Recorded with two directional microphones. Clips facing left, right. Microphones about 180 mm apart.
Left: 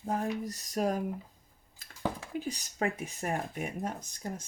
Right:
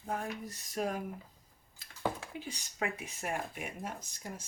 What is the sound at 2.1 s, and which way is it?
Speech, 40° left (ahead or behind).